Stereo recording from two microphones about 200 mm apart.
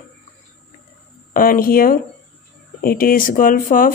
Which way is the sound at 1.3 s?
45° left (ahead or behind).